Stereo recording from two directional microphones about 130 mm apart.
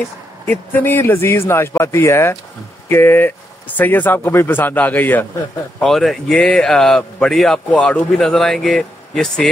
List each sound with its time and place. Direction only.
0.5 s a man's voice: 15° left (ahead or behind)
5.8 s speech: centre (ahead or behind)